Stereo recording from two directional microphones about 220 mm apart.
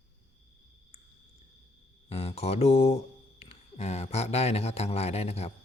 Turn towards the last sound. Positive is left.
turn(degrees=30)  # may be behind; listen again after turning